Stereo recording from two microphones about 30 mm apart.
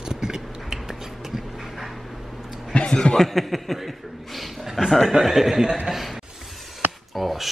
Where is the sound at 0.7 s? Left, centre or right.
Centre.